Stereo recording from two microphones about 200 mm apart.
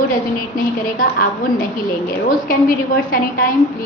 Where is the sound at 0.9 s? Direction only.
45° left (ahead or behind).